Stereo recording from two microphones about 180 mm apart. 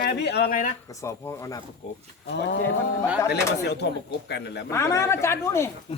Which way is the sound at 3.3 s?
70° left (ahead or behind).